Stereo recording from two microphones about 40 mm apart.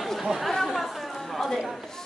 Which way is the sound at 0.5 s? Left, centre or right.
Centre.